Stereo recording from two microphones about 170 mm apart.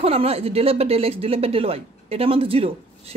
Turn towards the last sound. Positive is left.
turn(degrees=-35)  # may be behind; listen again after turning